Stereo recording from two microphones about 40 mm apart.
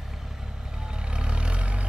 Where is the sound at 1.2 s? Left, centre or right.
Right.